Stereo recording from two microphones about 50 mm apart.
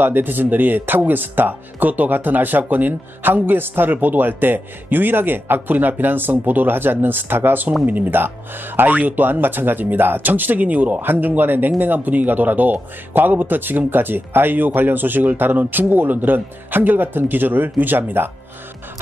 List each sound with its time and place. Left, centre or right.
0.0 s speech: right